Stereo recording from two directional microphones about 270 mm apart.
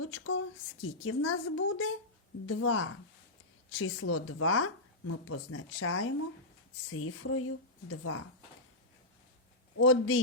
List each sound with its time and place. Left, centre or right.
0.0 s speech: left
9.7 s speech: left